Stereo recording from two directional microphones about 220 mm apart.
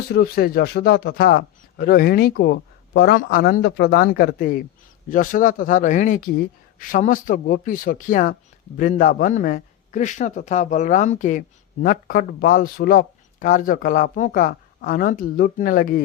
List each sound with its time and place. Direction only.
0.1 s a man's voice: 45° left (ahead or behind)